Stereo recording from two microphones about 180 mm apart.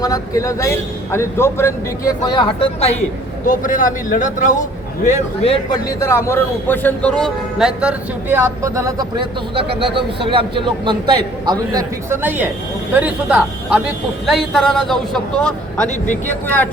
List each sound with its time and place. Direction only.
0.0 s speech: 20° left (ahead or behind)
3.4 s a man's voice: 45° left (ahead or behind)
6.0 s speech: 15° left (ahead or behind)
7.8 s a man's voice: 10° right (ahead or behind); by 16.6 s 10° left (ahead or behind)